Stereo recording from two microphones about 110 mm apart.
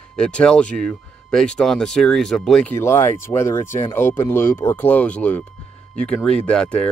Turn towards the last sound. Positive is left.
turn(degrees=10)  # may be behind; listen again after turning